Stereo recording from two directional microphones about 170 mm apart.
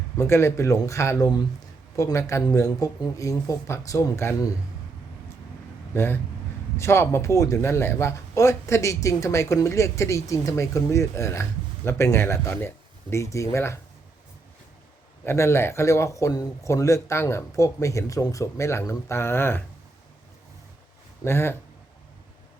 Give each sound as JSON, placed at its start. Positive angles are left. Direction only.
{"t": 0.2, "sound": "speech", "side_deg": 15}
{"t": 5.9, "sound": "speech", "side_deg": 15}
{"t": 15.2, "sound": "speech", "side_deg": 15}
{"t": 21.2, "sound": "speech", "side_deg": 15}